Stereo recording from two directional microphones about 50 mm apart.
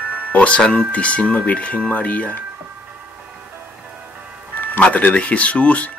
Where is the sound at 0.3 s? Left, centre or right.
Left.